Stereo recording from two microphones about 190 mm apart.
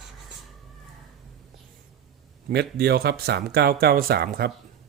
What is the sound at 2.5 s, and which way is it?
Speech, 60° right (ahead or behind).